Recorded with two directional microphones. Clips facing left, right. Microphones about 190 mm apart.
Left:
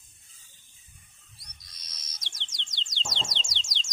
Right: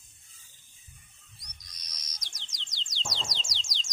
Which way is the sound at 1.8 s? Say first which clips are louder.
Left 2 dB; 25° left (ahead or behind).